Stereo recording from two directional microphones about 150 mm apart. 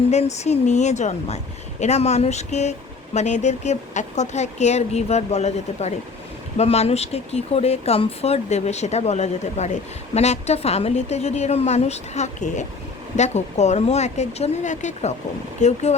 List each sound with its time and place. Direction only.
0.1 s speech: 50° left (ahead or behind)